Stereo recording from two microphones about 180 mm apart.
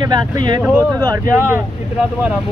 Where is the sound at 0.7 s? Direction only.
10° left (ahead or behind).